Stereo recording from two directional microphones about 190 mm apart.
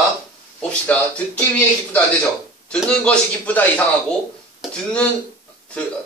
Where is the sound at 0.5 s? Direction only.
5° left (ahead or behind).